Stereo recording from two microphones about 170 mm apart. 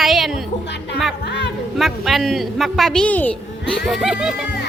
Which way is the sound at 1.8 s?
Centre (ahead or behind).